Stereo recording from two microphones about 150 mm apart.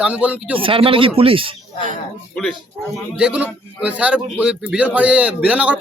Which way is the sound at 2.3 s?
5° left (ahead or behind).